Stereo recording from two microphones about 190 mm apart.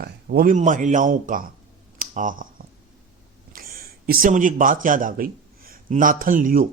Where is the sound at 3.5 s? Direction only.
50° right (ahead or behind).